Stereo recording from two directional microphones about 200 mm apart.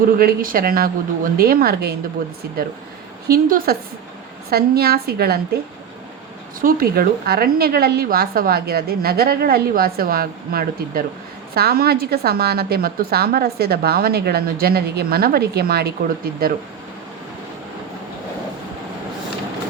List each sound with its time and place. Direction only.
0.2 s a woman's voice: 50° right (ahead or behind)
3.2 s a woman's voice: 45° right (ahead or behind)
6.6 s a woman's voice: 45° right (ahead or behind)